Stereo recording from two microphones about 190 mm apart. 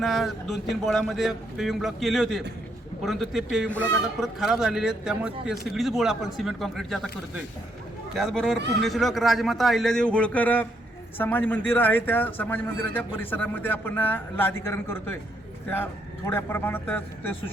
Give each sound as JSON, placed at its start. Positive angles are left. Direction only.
{"t": 0.0, "sound": "a man's voice", "side_deg": 0}